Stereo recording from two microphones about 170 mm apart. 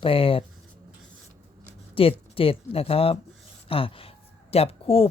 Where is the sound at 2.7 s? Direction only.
35° left (ahead or behind).